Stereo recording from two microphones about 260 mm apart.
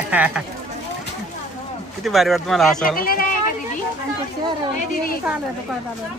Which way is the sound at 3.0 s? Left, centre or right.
Left.